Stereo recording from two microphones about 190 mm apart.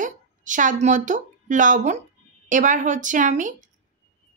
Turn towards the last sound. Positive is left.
turn(degrees=-40)  # may be behind; listen again after turning